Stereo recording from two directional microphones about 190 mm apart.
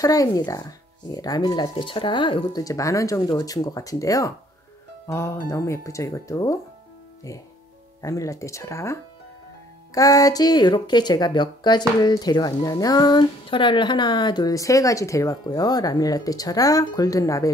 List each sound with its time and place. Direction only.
0.0 s speech: 20° left (ahead or behind)
8.0 s speech: 15° left (ahead or behind)